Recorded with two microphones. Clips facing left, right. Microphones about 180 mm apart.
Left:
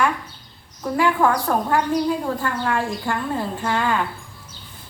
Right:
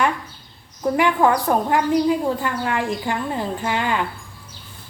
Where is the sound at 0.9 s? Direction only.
20° right (ahead or behind).